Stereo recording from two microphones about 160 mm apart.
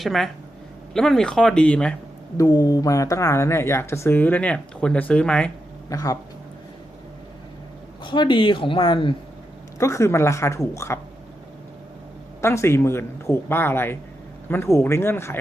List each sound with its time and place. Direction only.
0.0 s speech: centre (ahead or behind)
2.4 s speech: 20° left (ahead or behind); by 5.5 s 5° left (ahead or behind)
5.9 s speech: 20° left (ahead or behind)
8.0 s a man's voice: 30° left (ahead or behind)
9.7 s speech: 20° left (ahead or behind)
12.4 s speech: 15° left (ahead or behind)